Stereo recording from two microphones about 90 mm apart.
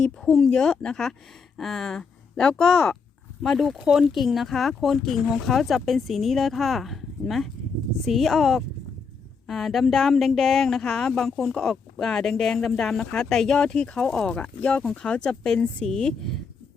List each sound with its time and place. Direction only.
0.0 s speech: 5° left (ahead or behind)